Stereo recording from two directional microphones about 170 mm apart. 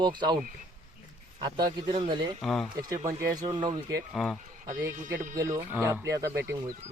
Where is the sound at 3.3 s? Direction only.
25° right (ahead or behind).